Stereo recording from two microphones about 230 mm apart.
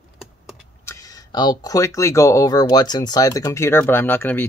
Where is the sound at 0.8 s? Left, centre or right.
Centre.